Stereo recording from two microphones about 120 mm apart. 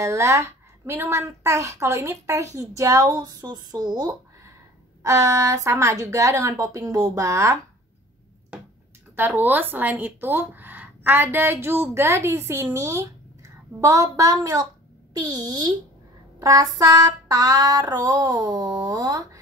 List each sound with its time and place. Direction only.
0.0 s speech: 25° right (ahead or behind)
9.1 s speech: 15° right (ahead or behind)
15.1 s a sound: 35° right (ahead or behind)